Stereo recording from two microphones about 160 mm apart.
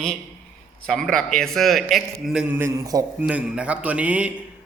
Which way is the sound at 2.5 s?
20° right (ahead or behind).